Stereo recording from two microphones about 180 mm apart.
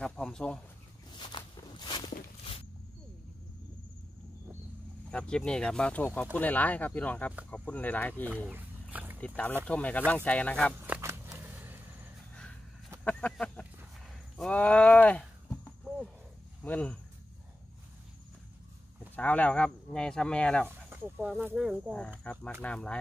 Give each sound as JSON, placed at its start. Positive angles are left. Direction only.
{"t": 0.0, "sound": "speech", "side_deg": 5}
{"t": 1.1, "sound": "walk", "side_deg": 25}
{"t": 5.1, "sound": "speech", "side_deg": 5}
{"t": 8.5, "sound": "a sound", "side_deg": -10}
{"t": 9.7, "sound": "speech", "side_deg": 5}
{"t": 10.9, "sound": "a sound", "side_deg": -10}
{"t": 13.0, "sound": "speech", "side_deg": 5}
{"t": 16.6, "sound": "speech", "side_deg": 10}
{"t": 19.1, "sound": "speech", "side_deg": 10}
{"t": 20.6, "sound": "speech", "side_deg": -10}